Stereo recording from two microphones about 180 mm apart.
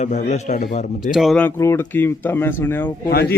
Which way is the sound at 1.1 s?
Centre (ahead or behind).